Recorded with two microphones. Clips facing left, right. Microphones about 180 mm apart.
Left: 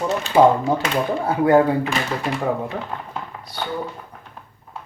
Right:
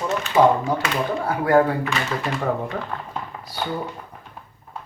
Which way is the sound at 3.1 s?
5° right (ahead or behind).